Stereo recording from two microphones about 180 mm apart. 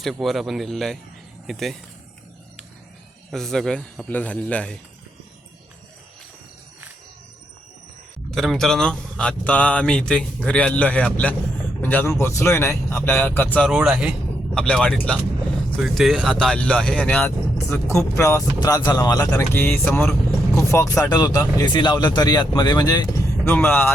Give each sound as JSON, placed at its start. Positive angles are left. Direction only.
{"t": 0.0, "sound": "speech", "side_deg": 0}
{"t": 3.3, "sound": "speech", "side_deg": 0}
{"t": 8.3, "sound": "speech", "side_deg": 0}
{"t": 13.7, "sound": "speech", "side_deg": -5}
{"t": 23.5, "sound": "speech", "side_deg": 10}